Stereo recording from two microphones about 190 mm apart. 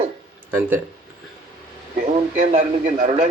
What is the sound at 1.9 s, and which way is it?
Speech, 45° right (ahead or behind).